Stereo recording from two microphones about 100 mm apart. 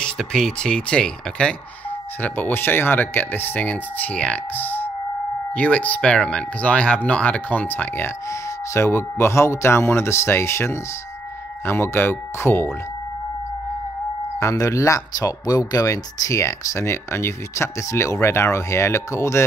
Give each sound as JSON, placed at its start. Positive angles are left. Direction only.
{"t": 0.0, "sound": "speech", "side_deg": 5}
{"t": 14.4, "sound": "speech", "side_deg": 30}